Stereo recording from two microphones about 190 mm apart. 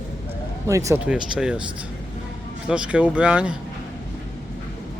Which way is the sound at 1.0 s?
5° right (ahead or behind).